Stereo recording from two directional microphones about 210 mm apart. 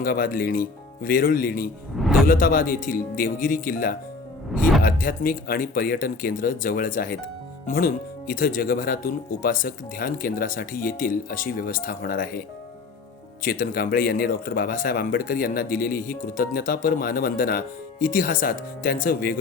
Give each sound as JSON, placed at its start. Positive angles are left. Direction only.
{"t": 0.0, "sound": "speech", "side_deg": 40}
{"t": 13.4, "sound": "speech", "side_deg": 45}